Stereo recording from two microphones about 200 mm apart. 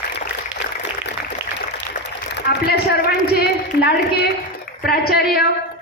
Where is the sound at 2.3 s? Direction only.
55° left (ahead or behind).